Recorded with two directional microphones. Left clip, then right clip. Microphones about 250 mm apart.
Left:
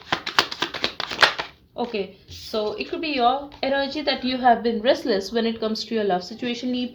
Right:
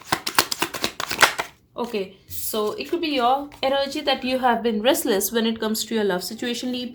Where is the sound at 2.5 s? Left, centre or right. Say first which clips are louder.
Right 1 dB; right.